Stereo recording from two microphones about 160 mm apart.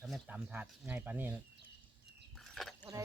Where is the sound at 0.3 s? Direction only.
10° right (ahead or behind).